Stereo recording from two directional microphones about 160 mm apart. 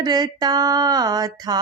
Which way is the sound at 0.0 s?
25° right (ahead or behind).